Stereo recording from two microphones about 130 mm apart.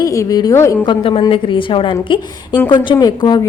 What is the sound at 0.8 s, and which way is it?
A woman's voice, 35° left (ahead or behind).